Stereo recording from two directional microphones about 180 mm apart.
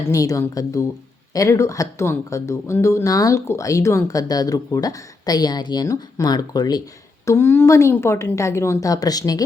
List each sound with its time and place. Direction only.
0.1 s a woman's voice: 20° left (ahead or behind)